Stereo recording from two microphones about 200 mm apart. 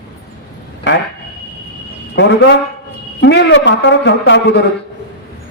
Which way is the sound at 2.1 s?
65° left (ahead or behind).